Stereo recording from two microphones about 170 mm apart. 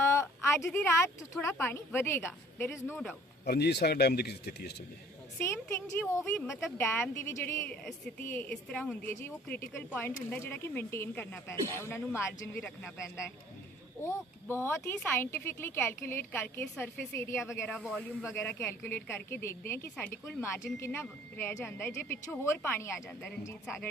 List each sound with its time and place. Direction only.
0.0 s speech: 15° left (ahead or behind)
3.4 s speech: 75° left (ahead or behind)
5.4 s speech: 15° left (ahead or behind)
17.6 s speech: centre (ahead or behind)
18.3 s speech: 15° left (ahead or behind)